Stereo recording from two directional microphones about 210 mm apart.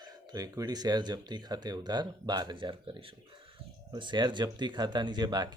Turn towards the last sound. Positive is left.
turn(degrees=-20)  # may be behind; listen again after turning